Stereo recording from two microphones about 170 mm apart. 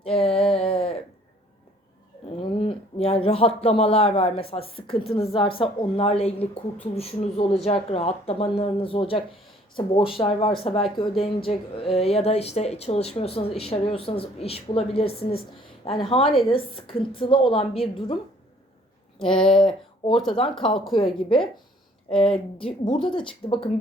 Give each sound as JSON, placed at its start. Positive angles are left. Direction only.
{"t": 0.0, "sound": "a sound", "side_deg": 35}
{"t": 2.3, "sound": "speech", "side_deg": 35}
{"t": 19.5, "sound": "speech", "side_deg": 30}